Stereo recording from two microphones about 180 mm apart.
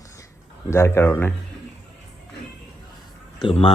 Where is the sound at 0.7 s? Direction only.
15° left (ahead or behind).